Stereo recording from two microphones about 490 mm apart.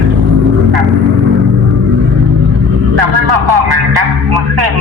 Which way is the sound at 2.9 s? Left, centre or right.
Right.